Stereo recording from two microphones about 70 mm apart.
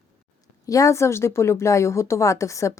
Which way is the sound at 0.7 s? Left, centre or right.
Left.